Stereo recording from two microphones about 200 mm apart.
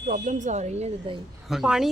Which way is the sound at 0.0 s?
40° right (ahead or behind).